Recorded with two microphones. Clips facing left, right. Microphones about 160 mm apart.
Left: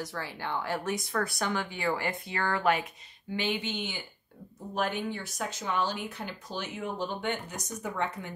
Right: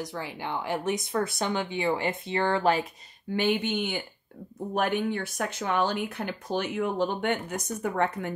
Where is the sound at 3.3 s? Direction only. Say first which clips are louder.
Right 6 dB; 50° right (ahead or behind).